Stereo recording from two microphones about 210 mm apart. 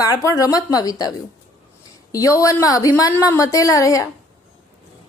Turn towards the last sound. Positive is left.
turn(degrees=15)  # may be behind; listen again after turning